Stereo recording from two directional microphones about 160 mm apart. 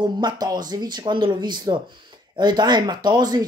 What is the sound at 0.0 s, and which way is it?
Speech, 25° right (ahead or behind).